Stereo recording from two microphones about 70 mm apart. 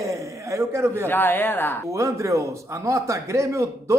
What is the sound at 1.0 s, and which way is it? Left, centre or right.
Speech, left.